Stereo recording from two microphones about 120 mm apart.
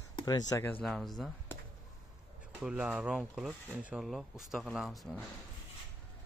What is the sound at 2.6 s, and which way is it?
Speech, 10° right (ahead or behind).